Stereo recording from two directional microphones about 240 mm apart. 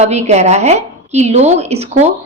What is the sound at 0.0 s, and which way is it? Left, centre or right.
A woman's voice, right.